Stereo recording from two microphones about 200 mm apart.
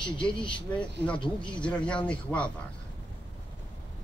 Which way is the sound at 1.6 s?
5° left (ahead or behind).